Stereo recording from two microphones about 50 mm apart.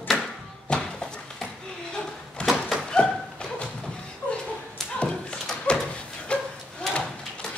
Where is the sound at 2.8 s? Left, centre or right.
Centre.